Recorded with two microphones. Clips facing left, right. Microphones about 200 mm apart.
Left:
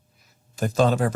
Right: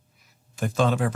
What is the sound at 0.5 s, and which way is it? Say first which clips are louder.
Speech: left 3 dB; 40° left (ahead or behind).